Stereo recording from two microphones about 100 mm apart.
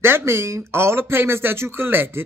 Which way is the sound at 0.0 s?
25° right (ahead or behind).